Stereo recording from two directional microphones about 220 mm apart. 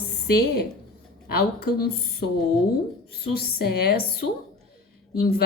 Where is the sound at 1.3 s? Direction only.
45° left (ahead or behind).